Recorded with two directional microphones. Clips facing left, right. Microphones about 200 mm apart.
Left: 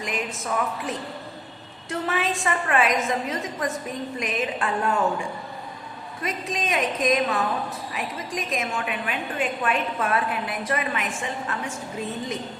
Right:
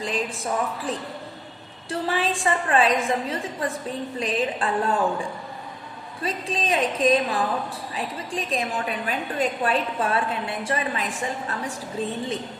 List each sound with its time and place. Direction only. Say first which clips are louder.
0.0 s a woman's voice: right 2 dB; 30° right (ahead or behind)
6.2 s a woman's voice: right 2 dB; 30° right (ahead or behind)